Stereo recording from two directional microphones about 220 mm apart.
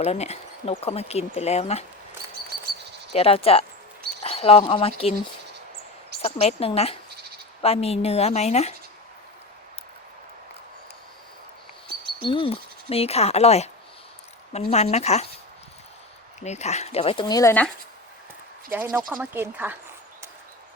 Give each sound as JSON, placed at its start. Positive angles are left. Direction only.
{"t": 0.0, "sound": "speech", "side_deg": 30}
{"t": 3.1, "sound": "speech", "side_deg": 25}
{"t": 12.2, "sound": "speech", "side_deg": 25}
{"t": 16.4, "sound": "speech", "side_deg": 30}
{"t": 18.7, "sound": "speech", "side_deg": -10}